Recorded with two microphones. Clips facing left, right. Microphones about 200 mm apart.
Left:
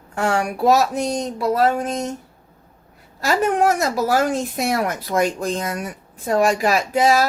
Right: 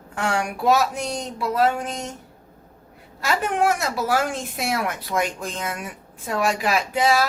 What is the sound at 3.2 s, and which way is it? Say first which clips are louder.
A woman's voice: left 4 dB; 40° left (ahead or behind).